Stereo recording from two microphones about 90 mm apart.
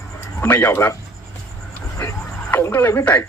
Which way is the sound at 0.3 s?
20° left (ahead or behind).